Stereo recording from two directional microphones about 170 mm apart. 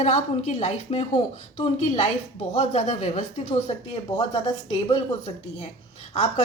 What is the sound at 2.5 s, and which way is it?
A woman's voice, 40° left (ahead or behind).